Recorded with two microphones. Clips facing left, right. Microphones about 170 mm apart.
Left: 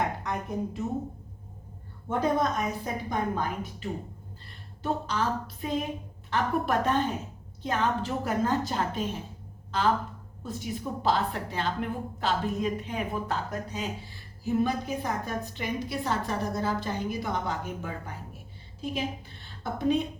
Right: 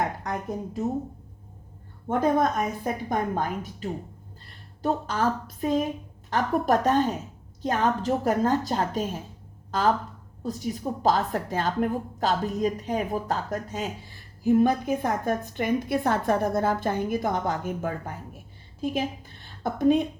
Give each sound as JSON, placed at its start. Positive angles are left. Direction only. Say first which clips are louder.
{"t": 0.2, "sound": "a woman's voice", "louder": "right 1 dB", "side_deg": -45}
{"t": 2.0, "sound": "a woman's voice", "louder": "right 4 dB", "side_deg": -50}
{"t": 4.8, "sound": "a woman's voice", "louder": "right 4 dB", "side_deg": -45}